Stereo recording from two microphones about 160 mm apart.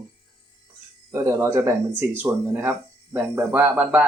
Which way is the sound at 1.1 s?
20° right (ahead or behind).